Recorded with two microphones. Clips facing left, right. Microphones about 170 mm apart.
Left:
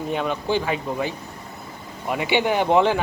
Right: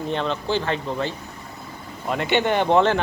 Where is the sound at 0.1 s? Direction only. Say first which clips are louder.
Left 1 dB; 10° left (ahead or behind).